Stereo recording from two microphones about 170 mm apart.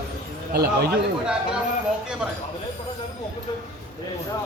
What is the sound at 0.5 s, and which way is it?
Speech, 70° right (ahead or behind).